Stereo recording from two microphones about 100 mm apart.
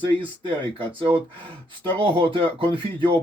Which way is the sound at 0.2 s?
60° right (ahead or behind).